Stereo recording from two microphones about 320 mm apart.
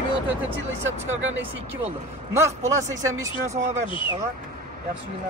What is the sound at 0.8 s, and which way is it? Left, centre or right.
Speech, right.